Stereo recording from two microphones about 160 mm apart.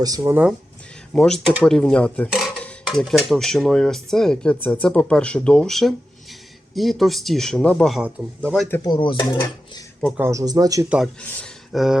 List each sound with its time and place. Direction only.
0.0 s speech: 20° right (ahead or behind)
1.1 s speech: centre (ahead or behind)
2.6 s dishes: 5° left (ahead or behind)
3.2 s speech: centre (ahead or behind)
8.8 s speech: 30° left (ahead or behind)
10.2 s speech: 15° right (ahead or behind)
10.8 s speech: 5° right (ahead or behind)
11.2 s speech: 10° left (ahead or behind)